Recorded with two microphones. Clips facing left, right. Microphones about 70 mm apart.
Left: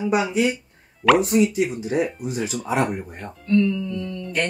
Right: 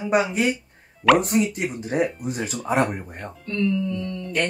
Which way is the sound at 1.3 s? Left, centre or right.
Right.